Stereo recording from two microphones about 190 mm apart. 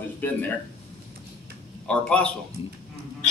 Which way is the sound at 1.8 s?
5° left (ahead or behind).